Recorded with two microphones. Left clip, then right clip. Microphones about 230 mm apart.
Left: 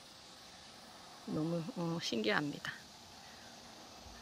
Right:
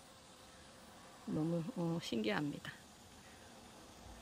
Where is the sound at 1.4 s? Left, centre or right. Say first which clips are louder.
Left 1 dB; centre.